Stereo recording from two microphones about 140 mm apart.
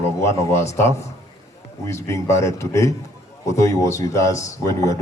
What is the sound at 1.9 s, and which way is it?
A man's voice, 20° left (ahead or behind).